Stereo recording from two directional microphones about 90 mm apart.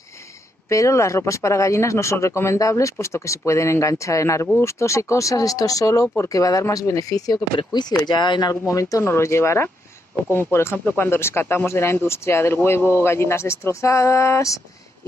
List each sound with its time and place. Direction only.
0.7 s speech: 35° left (ahead or behind)
7.5 s speech: 55° left (ahead or behind)
8.6 s speech: 35° left (ahead or behind)